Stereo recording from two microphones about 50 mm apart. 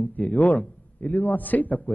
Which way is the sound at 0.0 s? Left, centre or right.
Left.